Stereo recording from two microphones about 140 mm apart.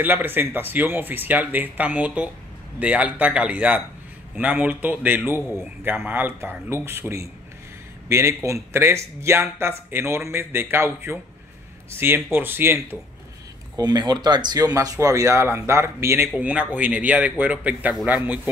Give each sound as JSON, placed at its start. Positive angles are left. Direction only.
{"t": 0.0, "sound": "speech", "side_deg": -15}
{"t": 13.7, "sound": "speech", "side_deg": -30}